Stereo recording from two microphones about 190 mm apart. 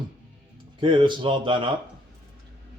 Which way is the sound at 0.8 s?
25° right (ahead or behind).